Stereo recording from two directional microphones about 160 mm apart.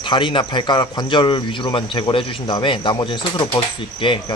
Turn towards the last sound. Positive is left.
turn(degrees=30)  # may be behind; listen again after turning